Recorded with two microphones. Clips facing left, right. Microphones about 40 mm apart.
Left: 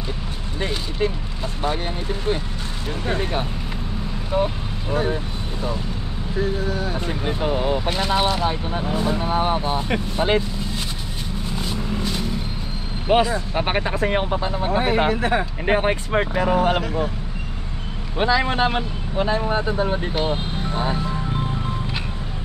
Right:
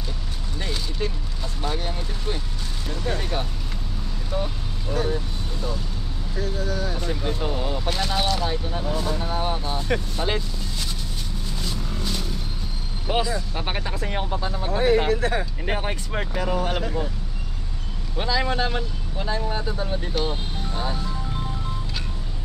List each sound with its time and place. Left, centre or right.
0.6 s a sound: left
1.6 s speech: left
11.5 s vehicle: left
13.1 s speech: left
18.1 s speech: left